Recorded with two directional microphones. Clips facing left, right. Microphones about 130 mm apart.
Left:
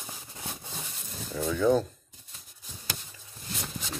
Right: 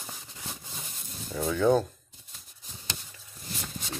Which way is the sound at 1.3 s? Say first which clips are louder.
Right 1 dB; 25° right (ahead or behind).